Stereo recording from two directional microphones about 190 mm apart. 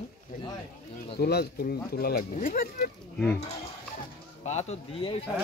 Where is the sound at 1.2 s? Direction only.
55° left (ahead or behind).